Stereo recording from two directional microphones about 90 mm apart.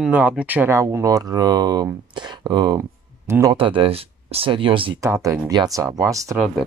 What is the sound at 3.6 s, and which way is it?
Speech, 80° right.